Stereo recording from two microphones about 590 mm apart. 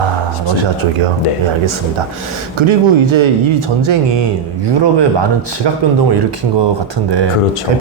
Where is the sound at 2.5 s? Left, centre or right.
Right.